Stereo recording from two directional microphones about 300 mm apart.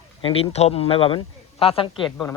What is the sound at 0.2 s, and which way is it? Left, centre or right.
Speech, centre.